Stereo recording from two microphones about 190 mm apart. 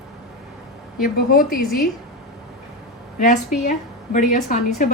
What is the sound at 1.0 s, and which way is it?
Speech, 50° left (ahead or behind).